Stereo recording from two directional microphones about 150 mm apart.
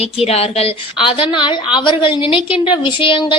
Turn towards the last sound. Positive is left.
turn(degrees=35)  # may be behind; listen again after turning